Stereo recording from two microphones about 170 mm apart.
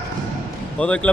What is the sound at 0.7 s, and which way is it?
Speech, 5° left (ahead or behind).